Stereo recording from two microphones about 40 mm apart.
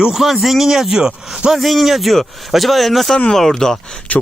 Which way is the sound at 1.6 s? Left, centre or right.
Centre.